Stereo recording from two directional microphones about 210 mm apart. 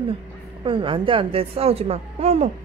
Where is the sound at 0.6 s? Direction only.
25° right (ahead or behind).